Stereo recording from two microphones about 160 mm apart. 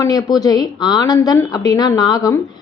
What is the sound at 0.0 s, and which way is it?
A woman's voice, 25° left (ahead or behind).